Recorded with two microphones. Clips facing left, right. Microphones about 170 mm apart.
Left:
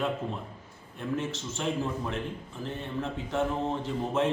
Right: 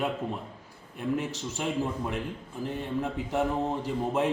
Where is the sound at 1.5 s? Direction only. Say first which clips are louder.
Right 1 dB; 15° right (ahead or behind).